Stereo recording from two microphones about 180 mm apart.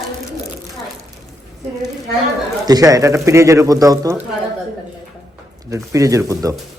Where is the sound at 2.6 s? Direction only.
20° right (ahead or behind).